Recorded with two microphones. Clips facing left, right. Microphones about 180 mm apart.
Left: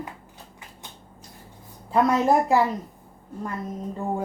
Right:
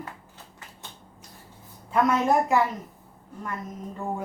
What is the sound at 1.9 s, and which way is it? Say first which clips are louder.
Speech: left 2 dB; 35° left (ahead or behind).